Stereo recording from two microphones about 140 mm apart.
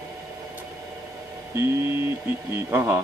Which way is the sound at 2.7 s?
15° right (ahead or behind).